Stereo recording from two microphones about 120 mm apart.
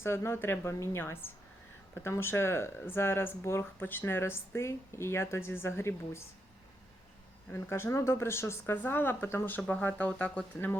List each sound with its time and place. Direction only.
0.0 s speech: 20° left (ahead or behind)
7.5 s speech: 20° left (ahead or behind)